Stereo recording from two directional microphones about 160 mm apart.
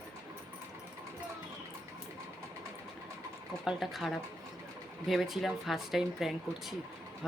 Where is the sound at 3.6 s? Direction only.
Centre (ahead or behind).